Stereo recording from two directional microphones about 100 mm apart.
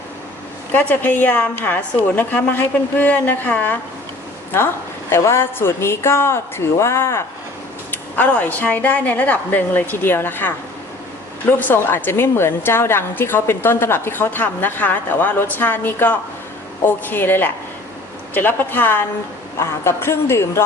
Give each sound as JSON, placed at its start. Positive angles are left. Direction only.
{"t": 0.7, "sound": "a woman's voice", "side_deg": 20}
{"t": 7.9, "sound": "a woman's voice", "side_deg": 15}
{"t": 11.6, "sound": "a woman's voice", "side_deg": 20}